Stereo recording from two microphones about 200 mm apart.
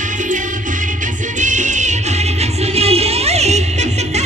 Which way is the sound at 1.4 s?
40° right (ahead or behind).